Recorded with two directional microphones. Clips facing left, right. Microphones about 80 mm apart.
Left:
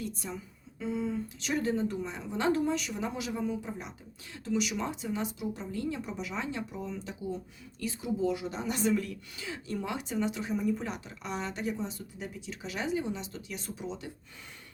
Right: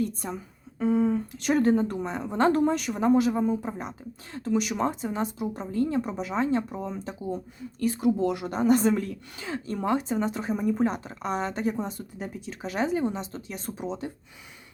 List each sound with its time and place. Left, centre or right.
0.0 s a woman's voice: right
7.8 s a woman's voice: right